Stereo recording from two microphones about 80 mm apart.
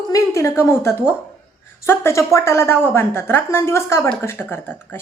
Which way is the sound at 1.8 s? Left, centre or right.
Left.